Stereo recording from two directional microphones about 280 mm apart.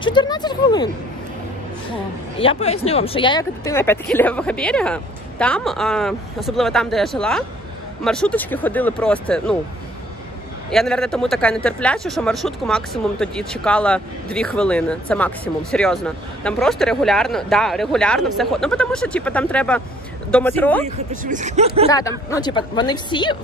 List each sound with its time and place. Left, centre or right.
0.0 s a woman's voice: centre
2.3 s a man's voice: centre
10.7 s a man's voice: centre
20.8 s speech: right
21.9 s a woman's voice: centre